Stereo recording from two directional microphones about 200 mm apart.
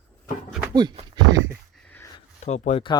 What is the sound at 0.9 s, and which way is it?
Speech, 20° right (ahead or behind).